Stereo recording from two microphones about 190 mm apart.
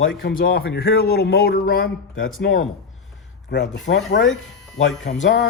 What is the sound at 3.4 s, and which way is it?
A man's voice, 70° left (ahead or behind).